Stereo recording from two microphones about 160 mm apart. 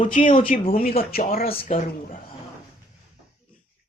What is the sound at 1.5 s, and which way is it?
Speech, 35° left (ahead or behind).